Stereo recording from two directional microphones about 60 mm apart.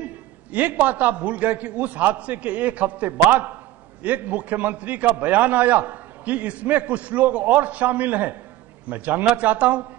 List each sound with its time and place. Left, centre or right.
0.0 s a man's voice: right